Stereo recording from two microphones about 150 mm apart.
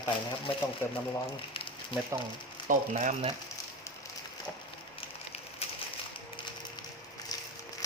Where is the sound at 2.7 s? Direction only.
55° right (ahead or behind).